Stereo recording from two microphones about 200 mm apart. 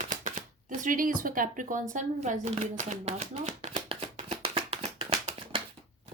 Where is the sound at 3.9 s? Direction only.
30° right (ahead or behind).